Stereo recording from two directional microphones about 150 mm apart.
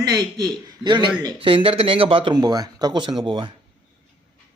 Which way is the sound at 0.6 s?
30° right (ahead or behind).